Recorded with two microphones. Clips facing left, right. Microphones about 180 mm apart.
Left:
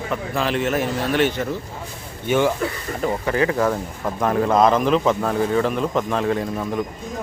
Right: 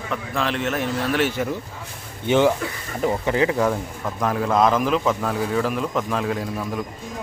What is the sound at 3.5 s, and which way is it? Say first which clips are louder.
Speech: left 1 dB; 5° right (ahead or behind).